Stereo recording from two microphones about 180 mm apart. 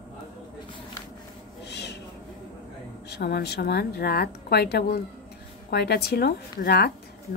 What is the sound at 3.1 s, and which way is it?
A woman's voice, 65° left (ahead or behind).